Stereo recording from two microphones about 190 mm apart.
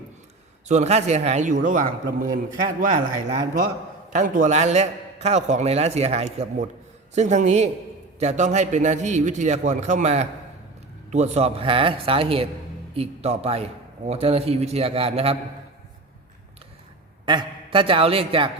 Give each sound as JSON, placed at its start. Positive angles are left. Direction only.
{"t": 0.7, "sound": "a man's voice", "side_deg": -35}
{"t": 17.2, "sound": "a man's voice", "side_deg": -25}